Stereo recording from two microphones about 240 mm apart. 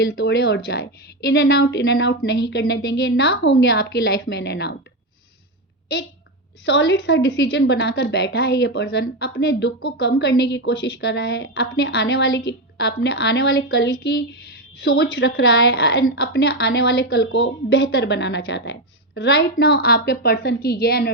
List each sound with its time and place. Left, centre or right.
0.0 s a woman's voice: left
6.7 s a woman's voice: left